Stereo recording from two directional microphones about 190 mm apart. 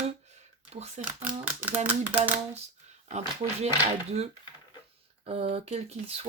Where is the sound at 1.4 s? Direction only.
10° right (ahead or behind).